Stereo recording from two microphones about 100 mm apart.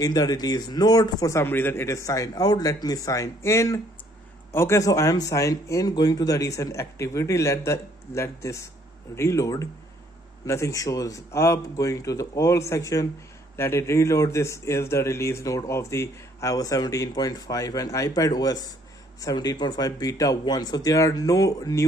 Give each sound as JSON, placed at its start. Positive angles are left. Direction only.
{"t": 0.0, "sound": "speech", "side_deg": 40}
{"t": 1.4, "sound": "speech", "side_deg": 20}